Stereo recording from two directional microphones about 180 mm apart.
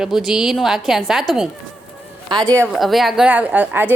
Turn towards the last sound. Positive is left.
turn(degrees=-10)  # may be behind; listen again after turning